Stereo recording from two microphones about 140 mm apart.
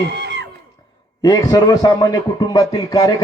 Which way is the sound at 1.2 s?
25° left (ahead or behind).